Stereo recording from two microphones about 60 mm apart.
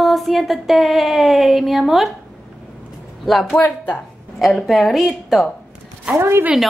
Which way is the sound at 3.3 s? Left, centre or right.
Centre.